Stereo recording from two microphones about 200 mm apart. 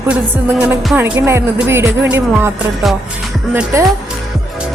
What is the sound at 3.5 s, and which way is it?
Speech, 15° right (ahead or behind).